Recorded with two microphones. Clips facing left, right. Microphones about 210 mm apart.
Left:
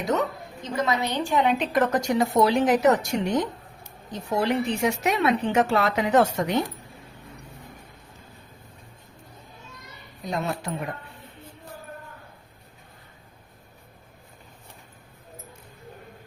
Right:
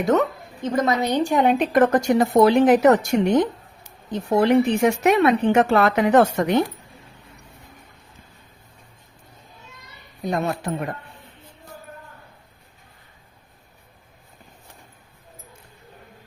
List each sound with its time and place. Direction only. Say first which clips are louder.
0.6 s a woman's voice: right 5 dB; 45° right (ahead or behind)
10.2 s a woman's voice: right 5 dB; 50° right (ahead or behind)